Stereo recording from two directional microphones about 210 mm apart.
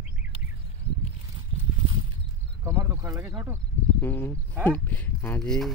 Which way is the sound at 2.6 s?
10° right (ahead or behind).